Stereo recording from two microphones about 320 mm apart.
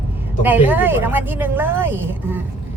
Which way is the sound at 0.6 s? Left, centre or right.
Centre.